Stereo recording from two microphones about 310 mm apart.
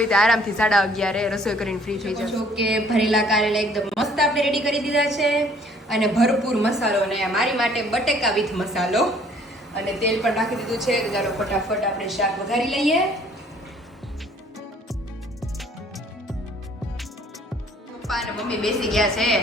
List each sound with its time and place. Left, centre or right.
0.0 s a woman's voice: centre
18.1 s a woman's voice: centre